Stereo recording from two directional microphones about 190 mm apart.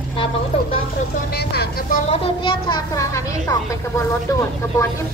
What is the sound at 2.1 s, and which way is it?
A child's voice, 30° left (ahead or behind).